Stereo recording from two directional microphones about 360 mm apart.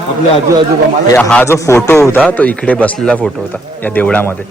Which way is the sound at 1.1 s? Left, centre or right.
Centre.